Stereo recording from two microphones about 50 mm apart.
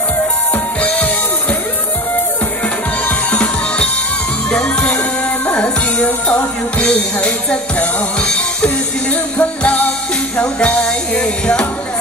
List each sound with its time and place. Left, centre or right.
0.8 s music: left
3.1 s music: left